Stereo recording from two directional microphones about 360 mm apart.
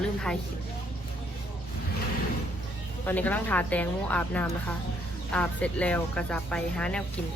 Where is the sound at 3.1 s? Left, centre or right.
Centre.